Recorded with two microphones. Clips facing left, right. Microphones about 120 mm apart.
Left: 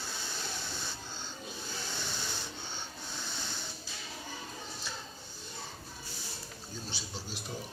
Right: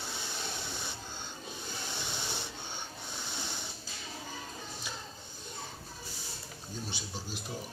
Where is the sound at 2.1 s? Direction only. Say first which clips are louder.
Right 1 dB; 20° right (ahead or behind).